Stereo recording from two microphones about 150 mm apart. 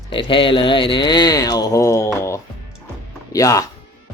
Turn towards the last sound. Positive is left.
turn(degrees=20)  # may be behind; listen again after turning